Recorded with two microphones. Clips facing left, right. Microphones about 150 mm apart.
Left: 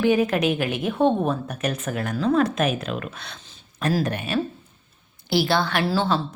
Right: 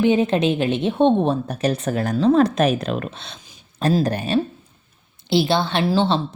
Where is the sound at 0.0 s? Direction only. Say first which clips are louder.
Right 2 dB; 25° right (ahead or behind).